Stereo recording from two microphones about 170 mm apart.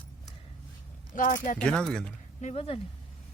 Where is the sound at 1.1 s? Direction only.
50° left (ahead or behind).